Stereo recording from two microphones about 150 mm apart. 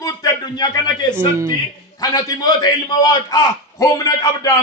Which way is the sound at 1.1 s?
20° right (ahead or behind).